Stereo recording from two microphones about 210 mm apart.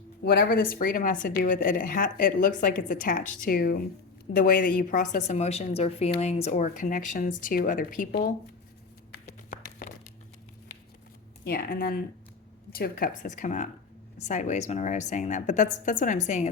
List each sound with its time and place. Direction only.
0.3 s a woman's voice: 45° left (ahead or behind)
9.2 s a sound: 40° left (ahead or behind)
11.4 s a woman's voice: 45° left (ahead or behind)